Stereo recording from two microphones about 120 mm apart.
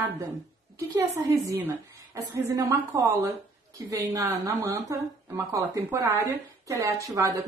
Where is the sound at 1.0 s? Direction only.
25° right (ahead or behind).